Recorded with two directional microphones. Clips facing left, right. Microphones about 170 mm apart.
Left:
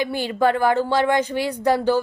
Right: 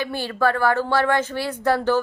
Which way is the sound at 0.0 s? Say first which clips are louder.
Left 2 dB; 15° left (ahead or behind).